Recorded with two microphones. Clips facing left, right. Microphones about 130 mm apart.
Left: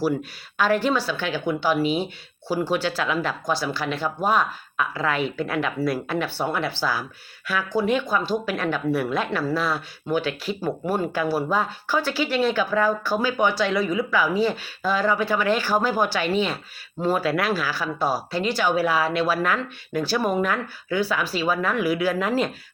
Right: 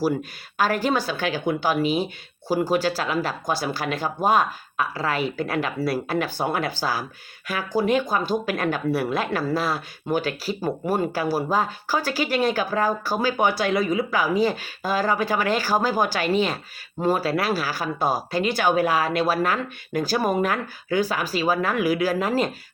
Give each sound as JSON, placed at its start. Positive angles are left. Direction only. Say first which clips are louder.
{"t": 0.0, "sound": "speech", "louder": "even", "side_deg": -45}